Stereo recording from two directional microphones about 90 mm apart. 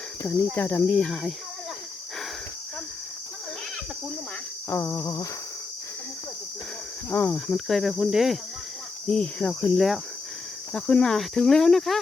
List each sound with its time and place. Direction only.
0.3 s cricket: 20° left (ahead or behind)
4.7 s cricket: 30° left (ahead or behind)
7.1 s cricket: 20° left (ahead or behind)
7.3 s cricket: 5° left (ahead or behind)
9.0 s cricket: 10° left (ahead or behind)